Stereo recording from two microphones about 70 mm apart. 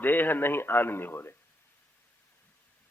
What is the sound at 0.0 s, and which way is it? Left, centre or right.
A man's voice, left.